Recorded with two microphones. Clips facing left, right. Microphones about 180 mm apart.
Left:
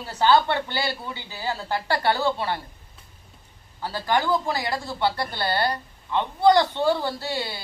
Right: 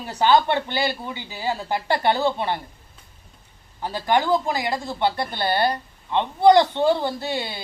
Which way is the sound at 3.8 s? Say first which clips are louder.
Right 3 dB; 20° right (ahead or behind).